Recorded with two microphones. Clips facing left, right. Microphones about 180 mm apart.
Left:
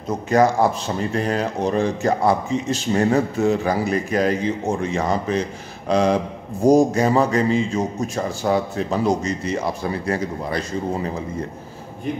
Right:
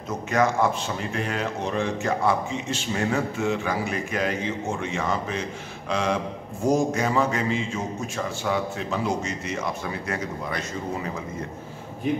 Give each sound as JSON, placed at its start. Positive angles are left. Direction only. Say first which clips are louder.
{"t": 0.1, "sound": "a man's voice", "louder": "left 6 dB", "side_deg": 35}